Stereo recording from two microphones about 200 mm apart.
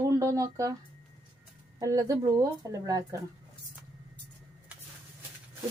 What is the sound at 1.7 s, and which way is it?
Speech, 15° right (ahead or behind).